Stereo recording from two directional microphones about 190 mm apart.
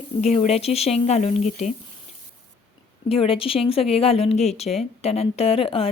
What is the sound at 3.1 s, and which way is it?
Speech, 30° left (ahead or behind).